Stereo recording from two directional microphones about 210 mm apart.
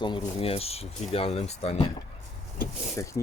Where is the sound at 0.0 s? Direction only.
25° left (ahead or behind).